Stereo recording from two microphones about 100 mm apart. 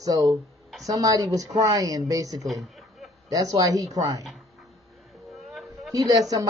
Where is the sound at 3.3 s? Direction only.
35° right (ahead or behind).